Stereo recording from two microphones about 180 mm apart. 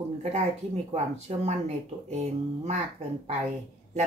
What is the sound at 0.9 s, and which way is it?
Speech, 35° right (ahead or behind).